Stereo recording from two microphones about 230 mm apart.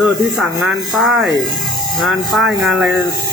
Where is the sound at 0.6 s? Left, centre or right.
Centre.